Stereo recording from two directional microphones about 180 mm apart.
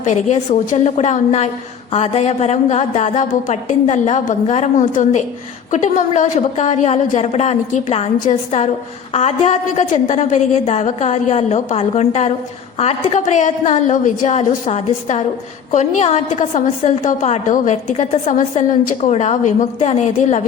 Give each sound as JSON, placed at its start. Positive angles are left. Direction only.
{"t": 0.0, "sound": "a woman's voice", "side_deg": 45}